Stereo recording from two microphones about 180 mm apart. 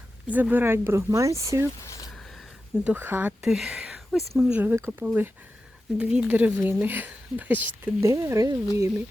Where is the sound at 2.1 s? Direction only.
Centre (ahead or behind).